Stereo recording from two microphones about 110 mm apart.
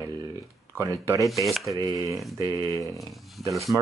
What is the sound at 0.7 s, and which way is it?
Speech, 30° right (ahead or behind).